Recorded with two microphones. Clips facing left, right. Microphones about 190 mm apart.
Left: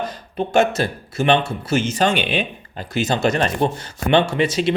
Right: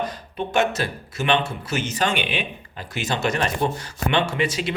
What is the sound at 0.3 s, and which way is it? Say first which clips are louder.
Speech: left 5 dB; 30° left (ahead or behind).